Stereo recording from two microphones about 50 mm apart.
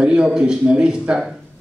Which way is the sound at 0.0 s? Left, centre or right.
Centre.